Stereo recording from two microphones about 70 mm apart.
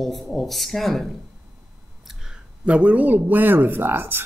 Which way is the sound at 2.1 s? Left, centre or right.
Centre.